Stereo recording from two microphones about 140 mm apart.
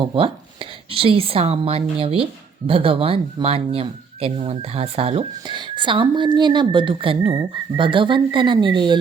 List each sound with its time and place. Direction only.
0.1 s speech: 40° right (ahead or behind)